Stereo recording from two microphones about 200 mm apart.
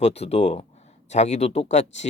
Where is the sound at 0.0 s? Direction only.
35° left (ahead or behind).